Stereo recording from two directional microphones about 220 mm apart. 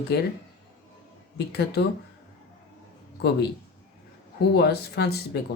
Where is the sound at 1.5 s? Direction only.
45° left (ahead or behind).